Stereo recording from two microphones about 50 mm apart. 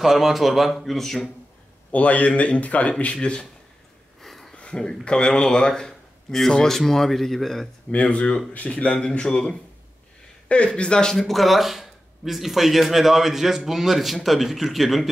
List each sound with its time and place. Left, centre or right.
0.0 s speech: centre
1.9 s speech: left
4.2 s a sound: centre
4.6 s speech: centre
7.9 s speech: left
10.8 s speech: centre
11.1 s speech: centre